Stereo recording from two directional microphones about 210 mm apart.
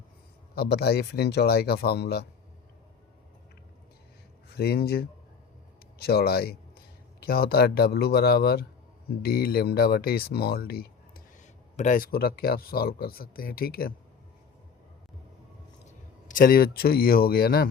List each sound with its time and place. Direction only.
0.5 s speech: 50° left (ahead or behind)
4.4 s speech: 50° left (ahead or behind)
15.9 s speech: 40° left (ahead or behind)